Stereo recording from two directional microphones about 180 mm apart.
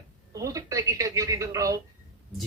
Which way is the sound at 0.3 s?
20° right (ahead or behind).